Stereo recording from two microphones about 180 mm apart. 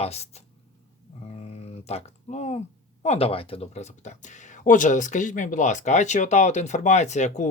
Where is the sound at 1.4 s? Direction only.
35° left (ahead or behind).